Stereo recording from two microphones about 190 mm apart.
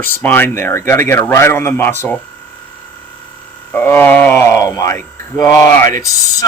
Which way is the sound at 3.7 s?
10° left (ahead or behind).